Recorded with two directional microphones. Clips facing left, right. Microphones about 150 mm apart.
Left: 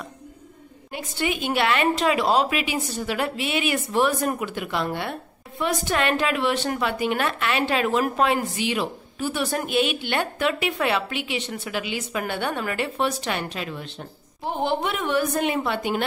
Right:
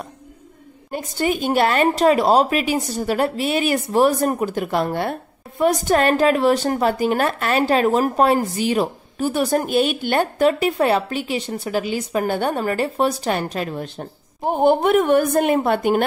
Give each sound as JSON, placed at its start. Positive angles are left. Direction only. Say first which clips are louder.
{"t": 0.9, "sound": "speech", "louder": "right 5 dB", "side_deg": -40}